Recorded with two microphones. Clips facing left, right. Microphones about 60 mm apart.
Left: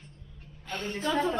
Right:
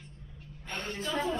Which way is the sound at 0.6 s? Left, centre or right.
Centre.